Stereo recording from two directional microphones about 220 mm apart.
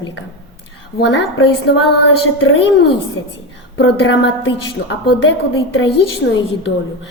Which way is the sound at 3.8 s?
55° left (ahead or behind).